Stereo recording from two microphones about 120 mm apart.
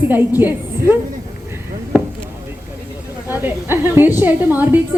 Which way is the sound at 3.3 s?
20° right (ahead or behind).